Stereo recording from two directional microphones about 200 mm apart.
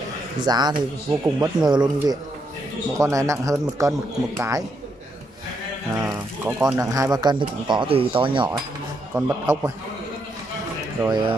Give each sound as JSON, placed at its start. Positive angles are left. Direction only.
{"t": 0.4, "sound": "a man's voice", "side_deg": -20}
{"t": 6.4, "sound": "speech", "side_deg": -10}
{"t": 9.1, "sound": "a man's voice", "side_deg": -10}
{"t": 11.0, "sound": "speech", "side_deg": -20}